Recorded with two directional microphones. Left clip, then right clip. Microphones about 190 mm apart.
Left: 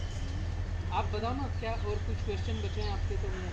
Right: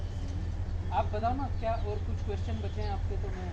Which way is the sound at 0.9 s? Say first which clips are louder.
Right 3 dB; 20° right (ahead or behind).